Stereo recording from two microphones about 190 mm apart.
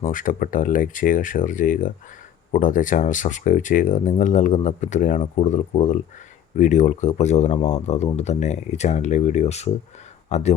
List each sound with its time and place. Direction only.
0.0 s speech: 45° left (ahead or behind)